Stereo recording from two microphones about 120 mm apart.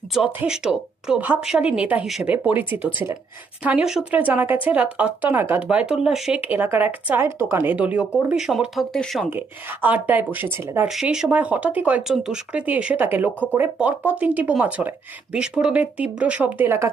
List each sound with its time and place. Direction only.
0.3 s speech: 5° right (ahead or behind)
6.4 s speech: 15° right (ahead or behind); by 9.2 s centre (ahead or behind)
9.8 s speech: 15° right (ahead or behind)
10.8 s speech: 5° right (ahead or behind)